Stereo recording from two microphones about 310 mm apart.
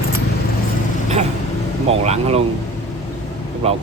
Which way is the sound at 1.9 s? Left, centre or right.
Centre.